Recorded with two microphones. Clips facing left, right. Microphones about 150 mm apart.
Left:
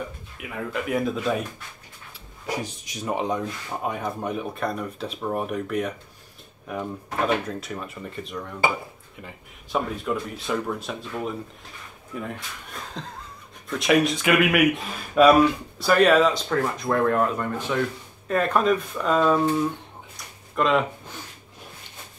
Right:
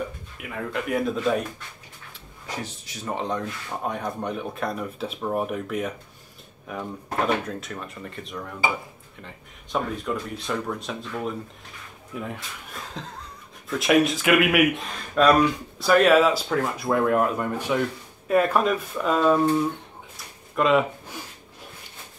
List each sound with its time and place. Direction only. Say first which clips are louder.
0.4 s speech: even; centre (ahead or behind)
2.4 s speech: left 4 dB; 10° left (ahead or behind)
7.4 s speech: left 1 dB; 5° left (ahead or behind)
20.5 s speech: right 1 dB; 5° right (ahead or behind)